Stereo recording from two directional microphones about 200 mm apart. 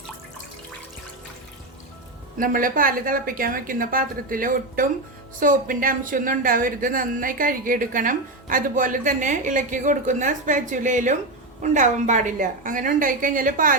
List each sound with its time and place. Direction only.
2.4 s a woman's voice: 45° right (ahead or behind)